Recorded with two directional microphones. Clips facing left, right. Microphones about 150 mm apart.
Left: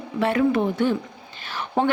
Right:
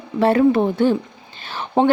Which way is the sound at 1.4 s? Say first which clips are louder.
Right 5 dB; 30° right (ahead or behind).